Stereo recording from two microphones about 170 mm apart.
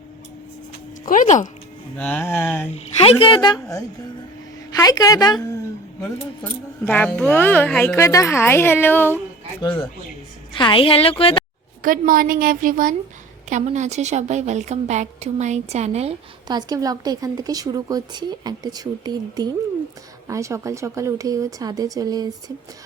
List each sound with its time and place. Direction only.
1.0 s speech: 50° left (ahead or behind)
2.0 s speech: 10° left (ahead or behind)
3.0 s a woman's voice: 30° left (ahead or behind)
6.4 s speech: 10° left (ahead or behind)
9.6 s a woman's voice: 30° left (ahead or behind)
11.8 s a woman's voice: 55° right (ahead or behind)
13.5 s a woman's voice: 45° right (ahead or behind)
16.5 s speech: 25° right (ahead or behind)